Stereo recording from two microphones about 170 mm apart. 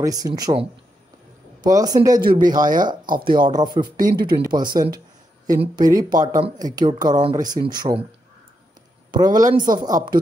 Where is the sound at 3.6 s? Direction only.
25° right (ahead or behind).